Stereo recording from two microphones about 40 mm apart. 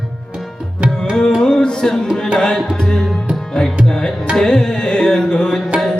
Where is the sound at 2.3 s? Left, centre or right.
Centre.